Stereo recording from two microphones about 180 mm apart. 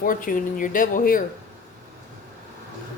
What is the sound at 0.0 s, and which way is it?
Speech, 50° left (ahead or behind).